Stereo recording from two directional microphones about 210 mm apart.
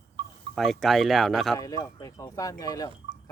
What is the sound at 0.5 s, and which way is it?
Speech, centre (ahead or behind).